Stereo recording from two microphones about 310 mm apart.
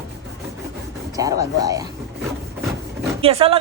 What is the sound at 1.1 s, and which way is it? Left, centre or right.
Speech, centre.